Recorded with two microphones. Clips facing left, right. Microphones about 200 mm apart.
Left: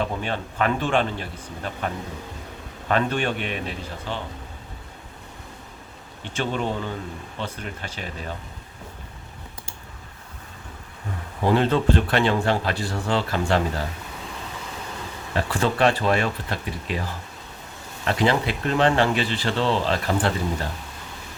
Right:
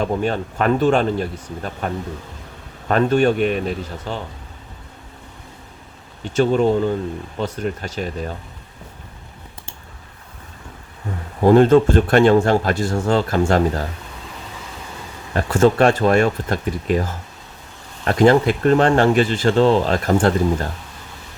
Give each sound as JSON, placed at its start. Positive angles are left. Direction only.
{"t": 0.0, "sound": "speech", "side_deg": -45}
{"t": 2.9, "sound": "speech", "side_deg": -45}
{"t": 6.3, "sound": "speech", "side_deg": -40}
{"t": 11.4, "sound": "speech", "side_deg": -45}
{"t": 15.4, "sound": "speech", "side_deg": -45}